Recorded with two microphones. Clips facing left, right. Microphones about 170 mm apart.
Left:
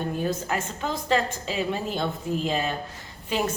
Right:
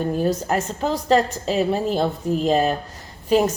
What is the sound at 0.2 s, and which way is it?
Speech, 40° right (ahead or behind).